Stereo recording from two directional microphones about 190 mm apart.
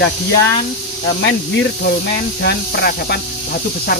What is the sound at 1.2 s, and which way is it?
Speech, 60° left (ahead or behind).